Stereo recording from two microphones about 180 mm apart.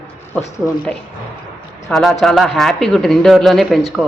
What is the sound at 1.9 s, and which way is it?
Speech, 5° left (ahead or behind).